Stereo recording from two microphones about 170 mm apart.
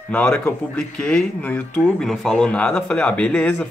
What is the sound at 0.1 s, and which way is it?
Speech, 5° left (ahead or behind).